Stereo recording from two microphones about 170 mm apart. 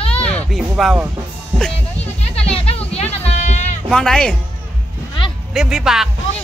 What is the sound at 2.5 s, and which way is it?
Music, 35° left (ahead or behind).